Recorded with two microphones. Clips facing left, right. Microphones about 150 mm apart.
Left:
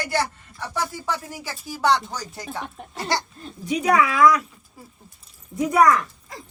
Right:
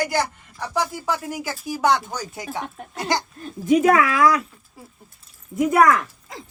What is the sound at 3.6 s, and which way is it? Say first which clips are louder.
Speech: right 4 dB; 45° right (ahead or behind).